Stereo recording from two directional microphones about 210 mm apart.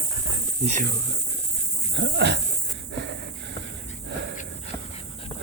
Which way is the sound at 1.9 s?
55° right (ahead or behind).